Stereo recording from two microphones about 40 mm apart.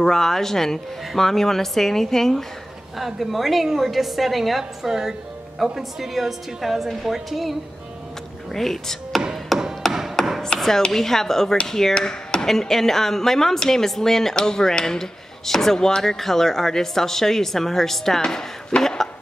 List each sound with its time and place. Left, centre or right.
0.0 s speech: centre
3.0 s a woman's voice: centre
9.5 s tap: centre
10.2 s chopping: centre
10.9 s speech: centre
12.0 s chop: centre
12.4 s speech: centre
18.8 s a sound: centre